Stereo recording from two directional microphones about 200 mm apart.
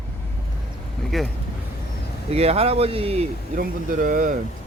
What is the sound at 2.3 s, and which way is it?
Speech, 30° right (ahead or behind).